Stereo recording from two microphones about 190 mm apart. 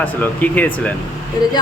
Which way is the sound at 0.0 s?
10° left (ahead or behind).